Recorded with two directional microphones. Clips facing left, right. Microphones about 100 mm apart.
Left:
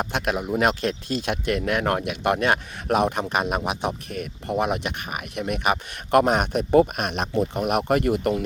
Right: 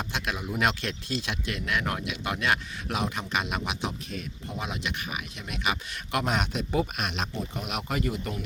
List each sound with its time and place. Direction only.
0.0 s speech: 50° left (ahead or behind); by 8.4 s 70° left (ahead or behind)